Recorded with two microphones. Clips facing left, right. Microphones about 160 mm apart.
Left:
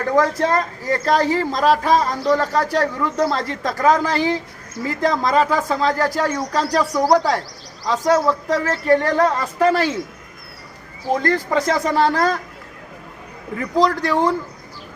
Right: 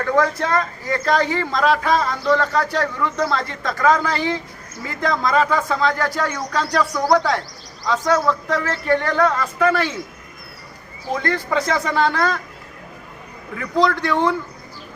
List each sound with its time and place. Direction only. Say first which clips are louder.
0.0 s speech: left 2 dB; 35° left (ahead or behind)
11.1 s speech: left 3 dB; 40° left (ahead or behind)
13.7 s speech: left 1 dB; 40° left (ahead or behind)